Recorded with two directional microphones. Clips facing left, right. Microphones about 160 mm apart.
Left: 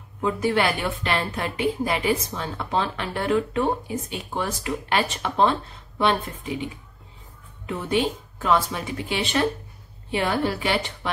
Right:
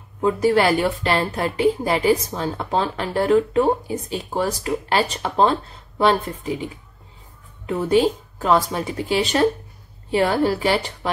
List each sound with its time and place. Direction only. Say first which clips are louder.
0.2 s speech: right 5 dB; 40° right (ahead or behind)
7.6 s speech: right 6 dB; 40° right (ahead or behind)